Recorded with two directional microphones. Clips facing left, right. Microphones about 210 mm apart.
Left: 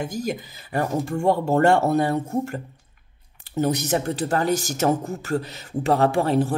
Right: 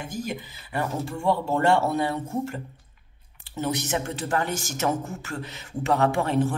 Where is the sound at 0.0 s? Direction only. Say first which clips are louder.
Left 5 dB; 40° left (ahead or behind).